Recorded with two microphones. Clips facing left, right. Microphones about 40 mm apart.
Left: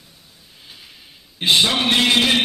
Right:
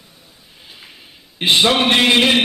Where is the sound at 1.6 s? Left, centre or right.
Right.